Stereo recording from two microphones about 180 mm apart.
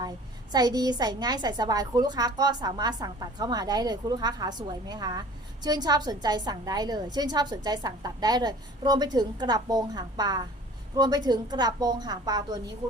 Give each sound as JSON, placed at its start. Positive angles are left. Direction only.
{"t": 0.5, "sound": "a woman's voice", "side_deg": -20}